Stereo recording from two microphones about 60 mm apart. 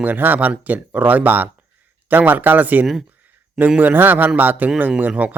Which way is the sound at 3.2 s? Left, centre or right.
Right.